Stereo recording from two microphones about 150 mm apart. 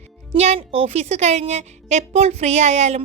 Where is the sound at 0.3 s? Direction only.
45° right (ahead or behind).